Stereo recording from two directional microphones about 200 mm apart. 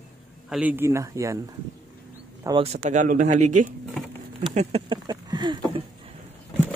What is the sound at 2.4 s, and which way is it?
Speech, 30° right (ahead or behind).